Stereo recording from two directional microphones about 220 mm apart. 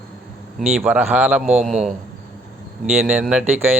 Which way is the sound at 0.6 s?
5° right (ahead or behind).